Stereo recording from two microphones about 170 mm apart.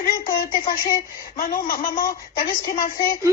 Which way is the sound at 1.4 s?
60° left (ahead or behind).